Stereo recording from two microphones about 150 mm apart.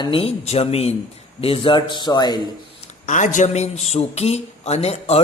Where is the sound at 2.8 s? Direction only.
55° left (ahead or behind).